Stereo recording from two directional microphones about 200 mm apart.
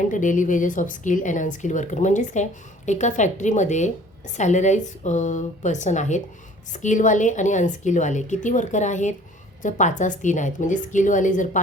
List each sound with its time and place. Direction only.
0.1 s a woman's voice: 40° left (ahead or behind)